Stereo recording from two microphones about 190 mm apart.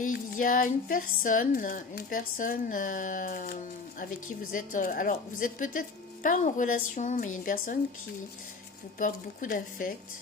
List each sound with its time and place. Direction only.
0.0 s speech: 45° left (ahead or behind)
9.0 s speech: 45° left (ahead or behind)